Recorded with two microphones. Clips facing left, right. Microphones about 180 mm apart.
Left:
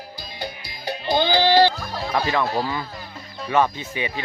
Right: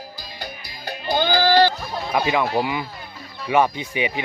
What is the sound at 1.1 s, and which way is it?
Speech, 15° left (ahead or behind).